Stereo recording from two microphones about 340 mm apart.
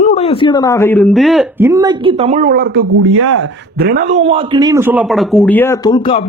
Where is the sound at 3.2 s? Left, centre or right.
Right.